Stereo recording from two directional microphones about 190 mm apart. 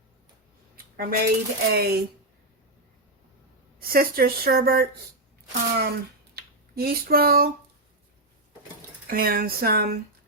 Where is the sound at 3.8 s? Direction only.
50° right (ahead or behind).